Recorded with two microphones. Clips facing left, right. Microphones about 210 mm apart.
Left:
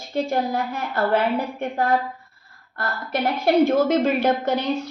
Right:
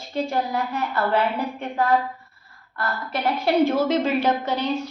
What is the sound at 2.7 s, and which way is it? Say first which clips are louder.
A woman's voice: left 2 dB; 45° left (ahead or behind).